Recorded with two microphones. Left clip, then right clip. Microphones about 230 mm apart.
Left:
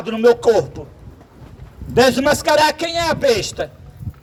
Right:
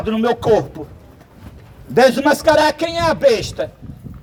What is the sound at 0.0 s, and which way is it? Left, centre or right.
Speech, left.